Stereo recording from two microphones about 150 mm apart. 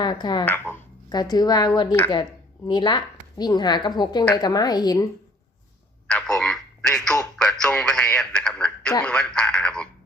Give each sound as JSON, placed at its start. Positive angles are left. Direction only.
{"t": 0.0, "sound": "a woman's voice", "side_deg": 30}
{"t": 0.4, "sound": "speech", "side_deg": 15}
{"t": 1.1, "sound": "a woman's voice", "side_deg": 25}
{"t": 6.1, "sound": "a sound", "side_deg": 5}
{"t": 7.3, "sound": "a man's voice", "side_deg": 5}